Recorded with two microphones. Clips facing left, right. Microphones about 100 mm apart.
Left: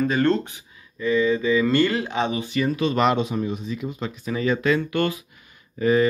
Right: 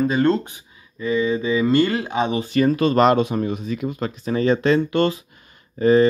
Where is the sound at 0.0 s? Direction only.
15° right (ahead or behind).